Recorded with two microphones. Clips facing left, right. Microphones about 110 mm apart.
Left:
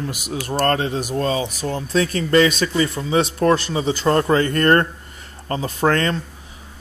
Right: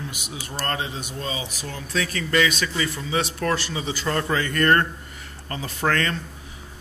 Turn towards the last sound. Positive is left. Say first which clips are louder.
# left 5 dB
turn(degrees=30)  # may be behind; listen again after turning